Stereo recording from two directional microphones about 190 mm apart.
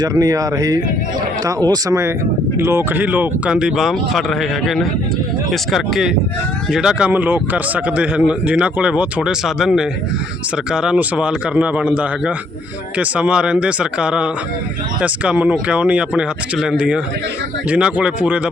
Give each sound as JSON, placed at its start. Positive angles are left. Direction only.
{"t": 0.0, "sound": "a man's voice", "side_deg": -20}